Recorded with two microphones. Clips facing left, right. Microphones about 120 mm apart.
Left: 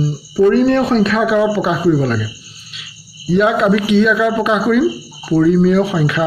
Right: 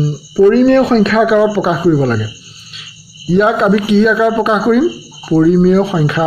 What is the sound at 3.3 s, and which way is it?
Speech, 35° right (ahead or behind).